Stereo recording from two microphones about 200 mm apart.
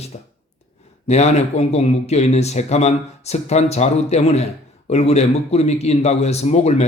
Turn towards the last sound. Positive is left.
turn(degrees=35)  # may be behind; listen again after turning